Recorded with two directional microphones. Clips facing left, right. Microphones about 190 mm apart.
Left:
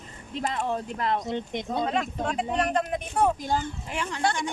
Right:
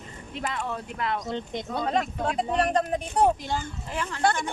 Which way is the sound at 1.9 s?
35° right (ahead or behind).